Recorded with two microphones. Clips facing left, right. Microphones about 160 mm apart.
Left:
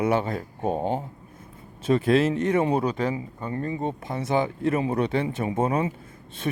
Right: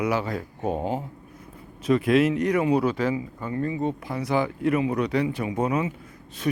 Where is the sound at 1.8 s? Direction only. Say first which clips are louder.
Right 1 dB; 30° left (ahead or behind).